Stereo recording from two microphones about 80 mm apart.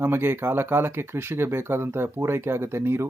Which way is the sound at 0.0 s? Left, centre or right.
Right.